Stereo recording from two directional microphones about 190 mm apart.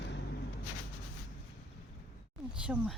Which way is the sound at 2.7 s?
5° right (ahead or behind).